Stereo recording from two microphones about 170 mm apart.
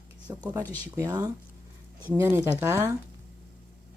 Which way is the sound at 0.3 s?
15° right (ahead or behind).